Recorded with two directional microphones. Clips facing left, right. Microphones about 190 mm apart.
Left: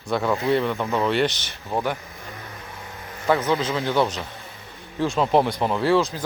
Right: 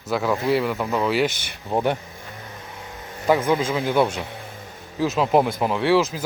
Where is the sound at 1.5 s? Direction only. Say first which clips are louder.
Right 3 dB; 15° right (ahead or behind).